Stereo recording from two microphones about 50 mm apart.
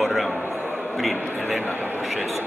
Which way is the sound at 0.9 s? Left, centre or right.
Centre.